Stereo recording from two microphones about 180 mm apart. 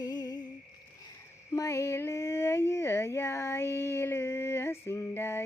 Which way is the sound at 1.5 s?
15° left (ahead or behind).